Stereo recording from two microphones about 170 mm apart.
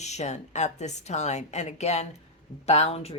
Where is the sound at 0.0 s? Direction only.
40° left (ahead or behind).